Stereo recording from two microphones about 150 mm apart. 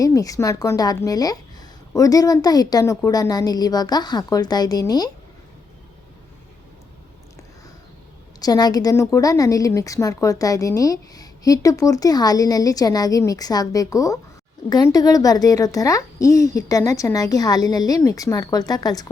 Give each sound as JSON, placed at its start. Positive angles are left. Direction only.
{"t": 0.0, "sound": "a woman's voice", "side_deg": 25}
{"t": 8.4, "sound": "a woman's voice", "side_deg": 25}